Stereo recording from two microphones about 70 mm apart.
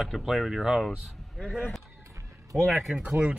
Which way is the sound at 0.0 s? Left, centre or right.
Centre.